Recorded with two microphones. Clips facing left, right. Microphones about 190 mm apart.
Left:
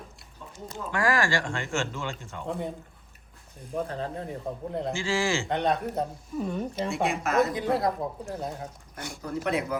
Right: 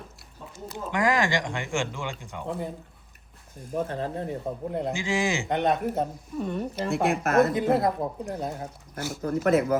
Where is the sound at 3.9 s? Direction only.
30° right (ahead or behind).